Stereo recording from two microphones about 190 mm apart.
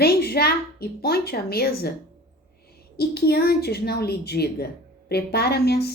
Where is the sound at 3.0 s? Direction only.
55° left (ahead or behind).